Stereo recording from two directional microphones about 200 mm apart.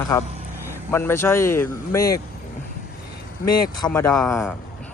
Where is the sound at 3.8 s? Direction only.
15° left (ahead or behind).